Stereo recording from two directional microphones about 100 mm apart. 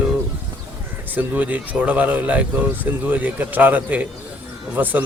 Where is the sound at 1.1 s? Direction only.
15° right (ahead or behind).